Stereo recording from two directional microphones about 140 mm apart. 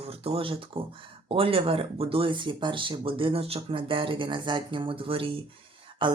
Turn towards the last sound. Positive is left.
turn(degrees=-35)  # may be behind; listen again after turning